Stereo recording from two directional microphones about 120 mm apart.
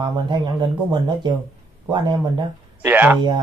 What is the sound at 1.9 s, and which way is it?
Speech, 35° right (ahead or behind).